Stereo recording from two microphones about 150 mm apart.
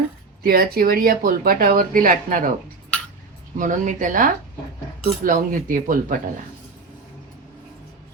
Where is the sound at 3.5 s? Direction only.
60° right (ahead or behind).